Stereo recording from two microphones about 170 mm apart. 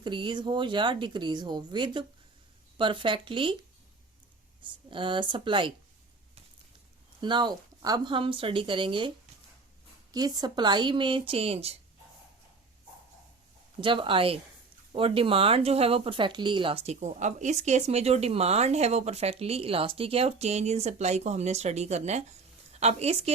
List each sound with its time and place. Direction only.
0.0 s speech: 30° right (ahead or behind)
4.6 s speech: 30° right (ahead or behind)
7.2 s speech: 25° right (ahead or behind)
13.8 s speech: 30° right (ahead or behind)